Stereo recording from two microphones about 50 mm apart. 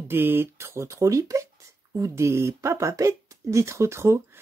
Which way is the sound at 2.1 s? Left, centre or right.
Right.